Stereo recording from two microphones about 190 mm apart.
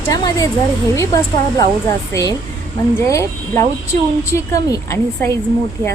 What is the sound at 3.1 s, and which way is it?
A woman's voice, 15° left (ahead or behind).